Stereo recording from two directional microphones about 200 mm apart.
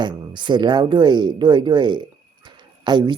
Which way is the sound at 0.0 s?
25° right (ahead or behind).